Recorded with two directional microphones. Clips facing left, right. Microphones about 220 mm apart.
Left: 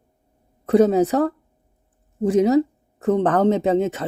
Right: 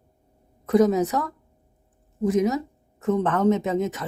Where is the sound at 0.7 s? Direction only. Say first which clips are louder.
Left 3 dB; 30° left (ahead or behind).